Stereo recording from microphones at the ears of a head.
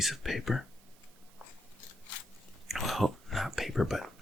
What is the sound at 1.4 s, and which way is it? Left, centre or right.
Biting, left.